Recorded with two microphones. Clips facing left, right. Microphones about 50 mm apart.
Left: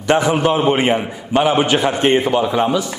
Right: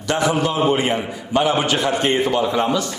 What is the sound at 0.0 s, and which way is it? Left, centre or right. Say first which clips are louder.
A man's voice: left 4 dB; left.